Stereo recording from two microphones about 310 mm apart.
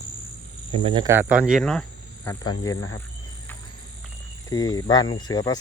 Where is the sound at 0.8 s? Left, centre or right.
Centre.